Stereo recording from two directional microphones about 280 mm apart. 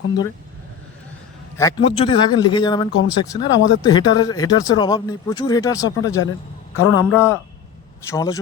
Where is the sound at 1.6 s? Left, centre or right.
Centre.